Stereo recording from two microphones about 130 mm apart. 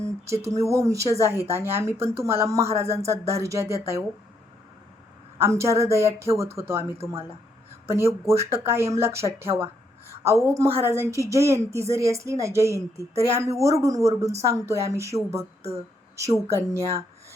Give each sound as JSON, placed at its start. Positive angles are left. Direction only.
{"t": 0.0, "sound": "a woman's voice", "side_deg": -20}
{"t": 5.4, "sound": "a woman's voice", "side_deg": -20}